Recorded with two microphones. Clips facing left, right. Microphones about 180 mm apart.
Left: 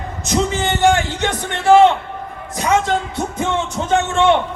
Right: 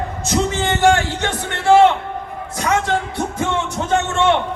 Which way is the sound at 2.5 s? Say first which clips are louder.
Left 2 dB; 20° left (ahead or behind).